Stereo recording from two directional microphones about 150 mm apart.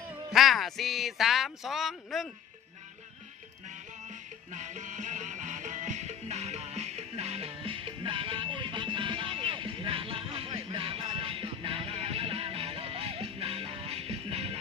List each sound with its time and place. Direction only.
0.3 s speech: centre (ahead or behind)
3.7 s music: 55° right (ahead or behind)